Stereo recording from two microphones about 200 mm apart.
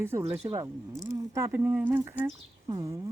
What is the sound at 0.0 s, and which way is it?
Speech, 10° right (ahead or behind).